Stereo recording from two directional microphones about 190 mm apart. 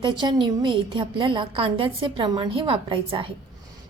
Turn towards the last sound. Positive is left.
turn(degrees=-25)  # may be behind; listen again after turning